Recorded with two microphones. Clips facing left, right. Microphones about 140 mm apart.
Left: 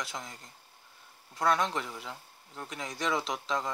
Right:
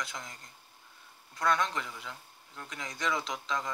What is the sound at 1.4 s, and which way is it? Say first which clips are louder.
Speech: left 2 dB; 30° left (ahead or behind).